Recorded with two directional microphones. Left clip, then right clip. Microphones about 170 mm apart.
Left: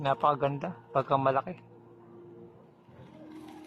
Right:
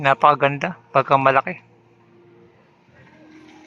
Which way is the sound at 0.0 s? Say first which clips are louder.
Right 12 dB; 15° right (ahead or behind).